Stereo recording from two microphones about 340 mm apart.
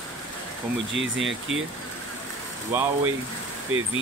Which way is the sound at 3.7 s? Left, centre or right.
Right.